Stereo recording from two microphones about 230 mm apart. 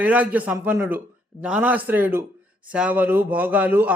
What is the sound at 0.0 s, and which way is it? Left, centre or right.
A man's voice, centre.